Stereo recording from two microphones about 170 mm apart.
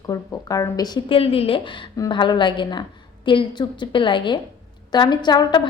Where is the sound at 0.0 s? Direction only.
20° left (ahead or behind).